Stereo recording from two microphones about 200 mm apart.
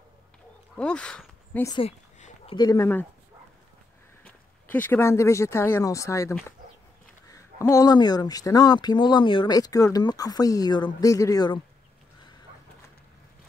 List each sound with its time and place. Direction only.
0.7 s speech: 5° left (ahead or behind)
1.7 s a sound: 30° left (ahead or behind)
2.5 s speech: 20° left (ahead or behind)
4.2 s speech: 10° left (ahead or behind)